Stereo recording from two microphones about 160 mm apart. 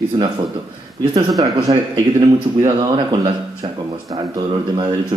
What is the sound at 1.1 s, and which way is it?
Speech, 25° right (ahead or behind).